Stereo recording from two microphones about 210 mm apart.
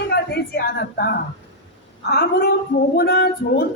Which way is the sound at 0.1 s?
50° left (ahead or behind).